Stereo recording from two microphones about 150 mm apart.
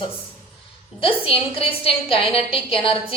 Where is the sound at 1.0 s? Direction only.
40° left (ahead or behind).